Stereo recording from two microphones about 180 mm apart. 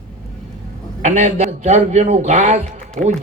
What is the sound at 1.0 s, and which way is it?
A man's voice, 40° right (ahead or behind).